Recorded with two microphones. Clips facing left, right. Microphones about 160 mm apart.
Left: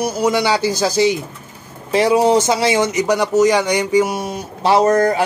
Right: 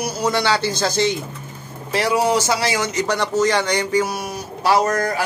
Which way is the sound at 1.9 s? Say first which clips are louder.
Left 5 dB; 20° left (ahead or behind).